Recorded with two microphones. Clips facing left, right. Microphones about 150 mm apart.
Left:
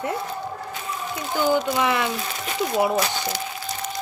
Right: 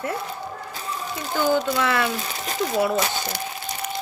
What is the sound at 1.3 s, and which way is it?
Speech, 15° left (ahead or behind).